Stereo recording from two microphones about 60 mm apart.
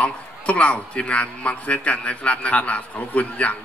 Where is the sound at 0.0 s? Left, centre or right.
Left.